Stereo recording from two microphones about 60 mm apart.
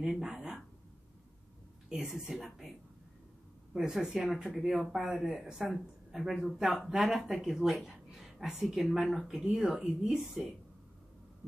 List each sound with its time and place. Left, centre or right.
0.0 s speech: centre
1.9 s speech: centre
3.7 s speech: centre